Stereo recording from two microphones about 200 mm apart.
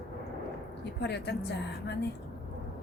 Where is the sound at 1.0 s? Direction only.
55° left (ahead or behind).